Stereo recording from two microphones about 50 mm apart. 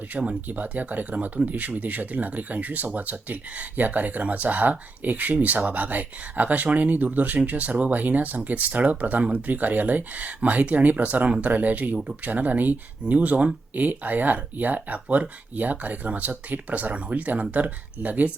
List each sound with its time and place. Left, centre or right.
0.1 s speech: right